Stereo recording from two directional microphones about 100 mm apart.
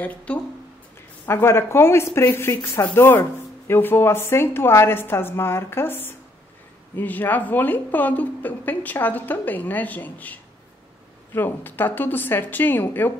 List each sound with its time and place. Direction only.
0.0 s a woman's voice: 15° left (ahead or behind)
1.2 s a woman's voice: 25° left (ahead or behind)